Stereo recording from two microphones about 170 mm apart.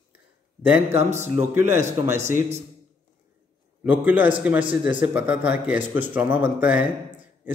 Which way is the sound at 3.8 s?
10° right (ahead or behind).